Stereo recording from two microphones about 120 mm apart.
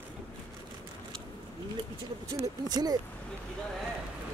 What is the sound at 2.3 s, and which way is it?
Speech, 35° right (ahead or behind).